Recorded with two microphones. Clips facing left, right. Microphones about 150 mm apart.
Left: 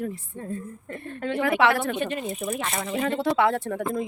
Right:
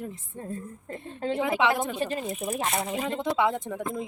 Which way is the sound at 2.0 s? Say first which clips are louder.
Left 1 dB; 35° right (ahead or behind).